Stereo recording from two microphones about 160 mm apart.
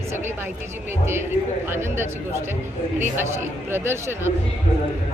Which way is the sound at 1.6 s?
15° right (ahead or behind).